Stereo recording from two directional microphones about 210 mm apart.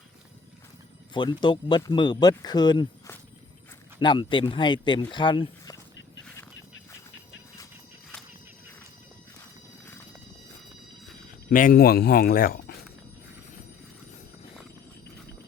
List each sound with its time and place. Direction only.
1.1 s speech: 20° left (ahead or behind)
11.4 s speech: 40° left (ahead or behind)